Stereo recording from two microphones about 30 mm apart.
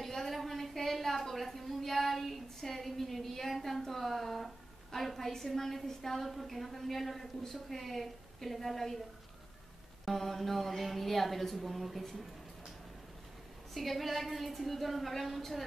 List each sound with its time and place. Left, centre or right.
0.0 s a sound: centre
4.9 s a woman's voice: centre
10.0 s a woman's voice: centre
13.7 s a woman's voice: centre